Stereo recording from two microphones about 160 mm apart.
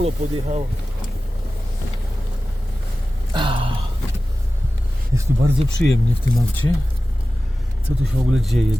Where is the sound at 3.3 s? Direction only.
30° right (ahead or behind).